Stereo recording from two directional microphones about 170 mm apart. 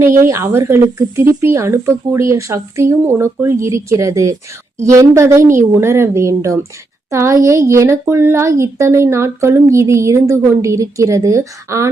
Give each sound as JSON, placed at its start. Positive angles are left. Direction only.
{"t": 0.0, "sound": "speech", "side_deg": -15}